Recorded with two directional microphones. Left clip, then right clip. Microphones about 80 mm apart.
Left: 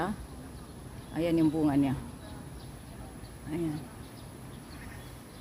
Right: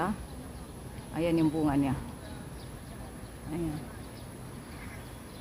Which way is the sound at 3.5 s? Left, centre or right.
Left.